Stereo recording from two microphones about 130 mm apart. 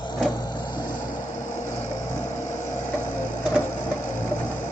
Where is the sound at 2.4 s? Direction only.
70° left (ahead or behind).